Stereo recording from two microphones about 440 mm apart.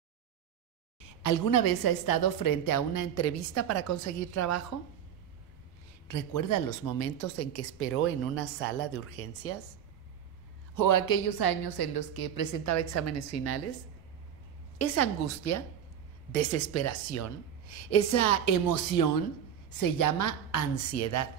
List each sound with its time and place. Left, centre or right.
1.0 s a woman's voice: left
6.0 s speech: left
10.7 s a woman's voice: left
12.6 s speech: left
14.8 s speech: left